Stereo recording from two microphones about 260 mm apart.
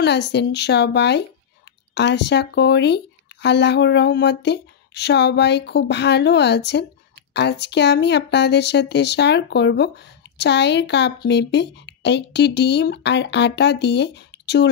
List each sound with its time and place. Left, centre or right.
0.0 s speech: left